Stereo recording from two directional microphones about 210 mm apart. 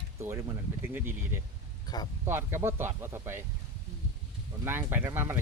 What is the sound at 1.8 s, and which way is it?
Speech, 20° left (ahead or behind).